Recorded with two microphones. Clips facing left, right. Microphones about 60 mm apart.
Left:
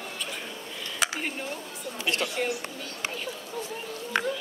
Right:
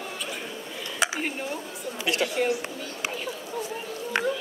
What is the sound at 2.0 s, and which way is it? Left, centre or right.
Speech, centre.